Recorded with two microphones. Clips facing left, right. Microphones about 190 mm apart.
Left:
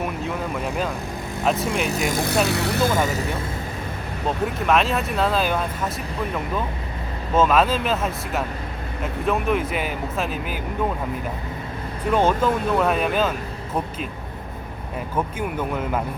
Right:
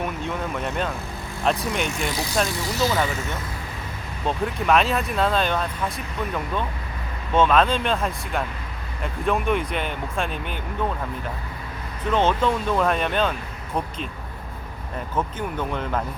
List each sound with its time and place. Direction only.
0.2 s speech: centre (ahead or behind)
1.9 s speech: 45° left (ahead or behind)
4.4 s speech: centre (ahead or behind)
7.3 s speech: 5° left (ahead or behind)
12.1 s speech: 10° left (ahead or behind)
15.1 s speech: 10° left (ahead or behind)